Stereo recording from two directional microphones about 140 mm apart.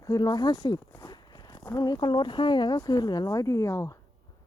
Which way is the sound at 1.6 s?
25° left (ahead or behind).